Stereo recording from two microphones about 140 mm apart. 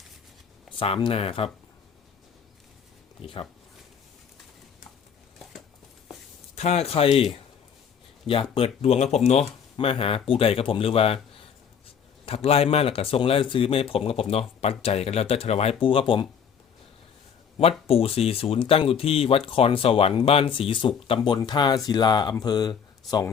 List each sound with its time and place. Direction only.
0.8 s speech: 40° left (ahead or behind)
3.2 s speech: 40° left (ahead or behind)
6.6 s speech: 50° left (ahead or behind)
9.7 s speech: 40° left (ahead or behind)
17.6 s speech: 45° left (ahead or behind); by 23.3 s 25° left (ahead or behind)